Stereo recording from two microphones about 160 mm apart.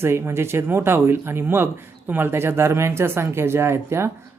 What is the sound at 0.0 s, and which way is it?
Speech, 15° right (ahead or behind).